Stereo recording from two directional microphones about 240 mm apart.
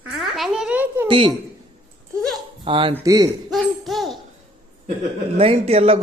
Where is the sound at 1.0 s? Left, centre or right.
Right.